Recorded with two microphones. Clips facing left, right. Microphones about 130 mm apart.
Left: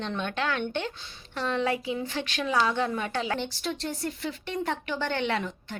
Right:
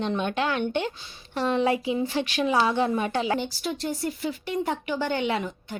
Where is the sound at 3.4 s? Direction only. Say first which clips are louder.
Right 2 dB; 5° right (ahead or behind).